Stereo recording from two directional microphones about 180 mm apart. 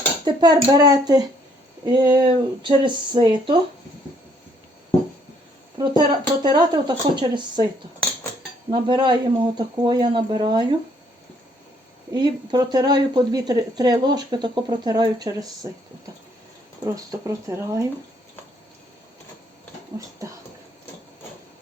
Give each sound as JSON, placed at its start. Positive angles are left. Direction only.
{"t": 0.3, "sound": "speech", "side_deg": -25}
{"t": 5.7, "sound": "speech", "side_deg": -25}
{"t": 8.7, "sound": "speech", "side_deg": -25}
{"t": 12.1, "sound": "speech", "side_deg": -20}
{"t": 16.8, "sound": "speech", "side_deg": -20}